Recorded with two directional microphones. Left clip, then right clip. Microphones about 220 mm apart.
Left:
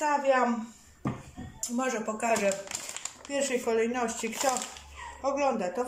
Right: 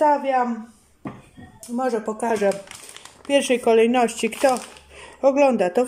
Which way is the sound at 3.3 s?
45° right (ahead or behind).